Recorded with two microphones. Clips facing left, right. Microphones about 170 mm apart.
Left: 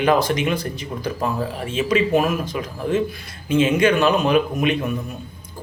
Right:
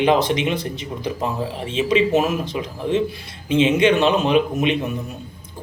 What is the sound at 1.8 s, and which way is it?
Speech, 25° right (ahead or behind).